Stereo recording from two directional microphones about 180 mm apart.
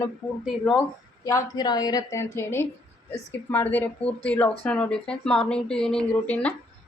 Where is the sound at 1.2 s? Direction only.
20° left (ahead or behind).